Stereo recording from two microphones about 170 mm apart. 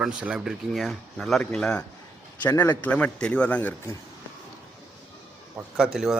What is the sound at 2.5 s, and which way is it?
Speech, 20° left (ahead or behind).